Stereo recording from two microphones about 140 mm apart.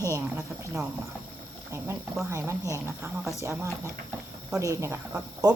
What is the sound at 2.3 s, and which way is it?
Speech, 20° right (ahead or behind).